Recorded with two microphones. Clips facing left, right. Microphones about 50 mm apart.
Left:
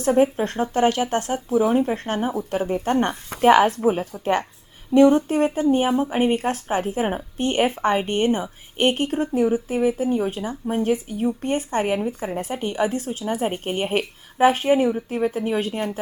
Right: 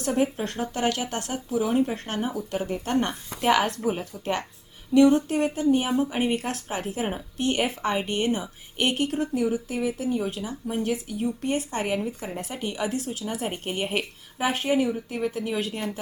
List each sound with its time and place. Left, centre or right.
0.0 s speech: left